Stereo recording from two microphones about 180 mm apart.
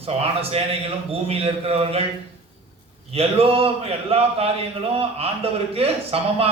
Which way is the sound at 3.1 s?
35° right (ahead or behind).